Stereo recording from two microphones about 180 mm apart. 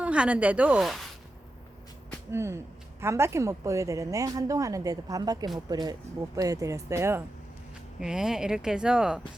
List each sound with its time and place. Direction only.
0.0 s speech: 5° right (ahead or behind)
2.3 s a woman's voice: 15° right (ahead or behind)
7.9 s speech: 5° right (ahead or behind)